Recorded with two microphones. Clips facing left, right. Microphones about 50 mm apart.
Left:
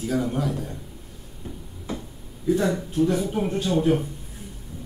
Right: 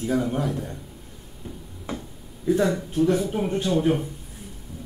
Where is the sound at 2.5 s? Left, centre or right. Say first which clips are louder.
Right 1 dB; centre.